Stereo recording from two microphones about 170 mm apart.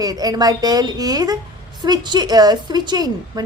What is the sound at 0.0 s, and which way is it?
A woman's voice, 20° right (ahead or behind).